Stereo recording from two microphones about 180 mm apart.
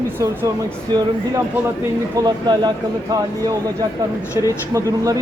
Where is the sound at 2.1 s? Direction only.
25° right (ahead or behind).